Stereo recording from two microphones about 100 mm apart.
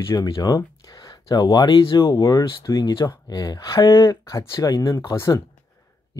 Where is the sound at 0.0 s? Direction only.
35° left (ahead or behind).